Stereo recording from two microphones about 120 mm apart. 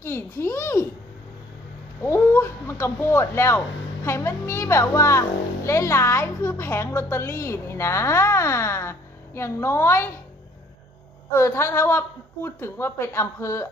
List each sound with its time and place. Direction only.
0.0 s a woman's voice: 20° left (ahead or behind)
2.0 s a woman's voice: 25° left (ahead or behind)
11.3 s a woman's voice: 20° left (ahead or behind)